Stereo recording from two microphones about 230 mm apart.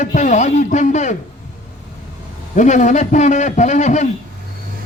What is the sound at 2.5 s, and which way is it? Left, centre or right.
Speech, left.